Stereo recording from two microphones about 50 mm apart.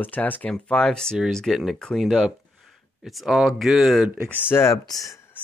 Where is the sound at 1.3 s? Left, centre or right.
Centre.